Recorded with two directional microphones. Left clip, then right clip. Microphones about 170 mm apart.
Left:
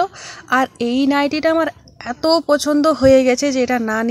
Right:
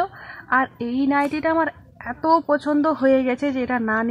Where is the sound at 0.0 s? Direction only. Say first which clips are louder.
Left 5 dB; 35° left (ahead or behind).